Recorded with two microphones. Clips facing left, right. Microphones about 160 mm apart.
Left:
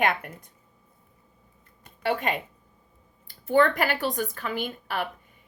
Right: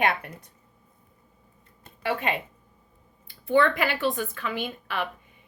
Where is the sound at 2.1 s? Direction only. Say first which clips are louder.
Even; 45° left (ahead or behind).